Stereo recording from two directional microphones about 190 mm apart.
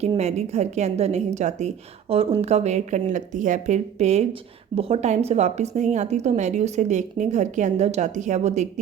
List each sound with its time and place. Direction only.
0.0 s a woman's voice: 35° right (ahead or behind)